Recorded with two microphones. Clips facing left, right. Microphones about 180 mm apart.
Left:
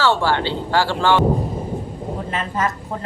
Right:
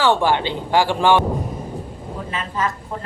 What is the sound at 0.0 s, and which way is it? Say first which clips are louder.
Speech: right 1 dB; 15° right (ahead or behind).